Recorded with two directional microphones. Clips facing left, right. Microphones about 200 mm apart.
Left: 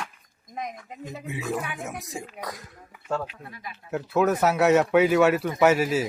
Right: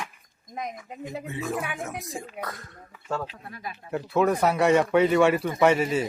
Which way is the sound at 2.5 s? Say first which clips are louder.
Even; centre (ahead or behind).